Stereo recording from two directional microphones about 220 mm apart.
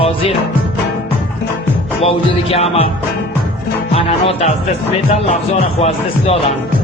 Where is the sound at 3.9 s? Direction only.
25° left (ahead or behind).